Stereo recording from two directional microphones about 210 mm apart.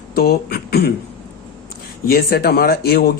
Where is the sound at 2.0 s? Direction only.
50° left (ahead or behind).